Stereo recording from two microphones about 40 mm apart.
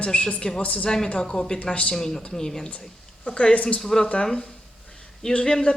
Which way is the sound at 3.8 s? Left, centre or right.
Centre.